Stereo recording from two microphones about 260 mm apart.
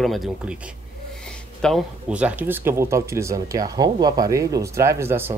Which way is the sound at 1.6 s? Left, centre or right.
Centre.